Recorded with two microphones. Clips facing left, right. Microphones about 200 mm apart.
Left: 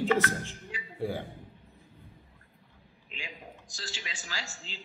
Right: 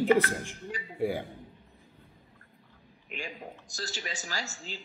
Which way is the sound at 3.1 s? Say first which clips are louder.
Right 6 dB; 55° right (ahead or behind).